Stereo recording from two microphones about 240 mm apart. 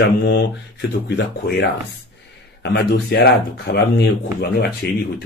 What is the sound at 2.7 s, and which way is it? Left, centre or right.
Speech, left.